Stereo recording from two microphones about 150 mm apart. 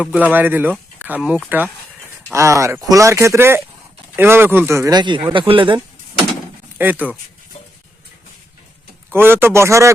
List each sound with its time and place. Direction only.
0.0 s speech: 10° right (ahead or behind); by 5.8 s 35° right (ahead or behind)
6.7 s speech: 10° right (ahead or behind)
9.1 s speech: 15° right (ahead or behind)